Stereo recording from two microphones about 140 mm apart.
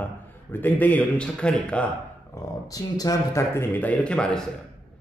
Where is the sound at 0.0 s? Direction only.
10° left (ahead or behind).